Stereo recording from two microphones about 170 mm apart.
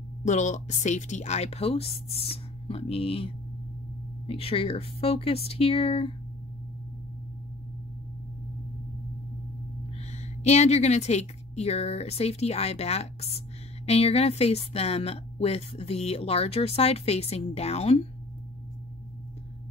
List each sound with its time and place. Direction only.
0.2 s a woman's voice: 45° left (ahead or behind)
10.1 s a woman's voice: 40° left (ahead or behind)